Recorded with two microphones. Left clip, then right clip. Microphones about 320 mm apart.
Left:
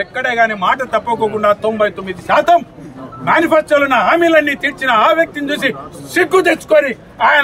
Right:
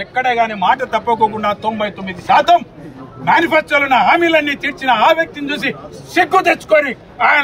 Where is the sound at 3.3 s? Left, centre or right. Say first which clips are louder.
Left 1 dB; centre.